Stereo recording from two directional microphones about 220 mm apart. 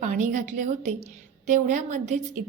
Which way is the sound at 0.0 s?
35° right (ahead or behind).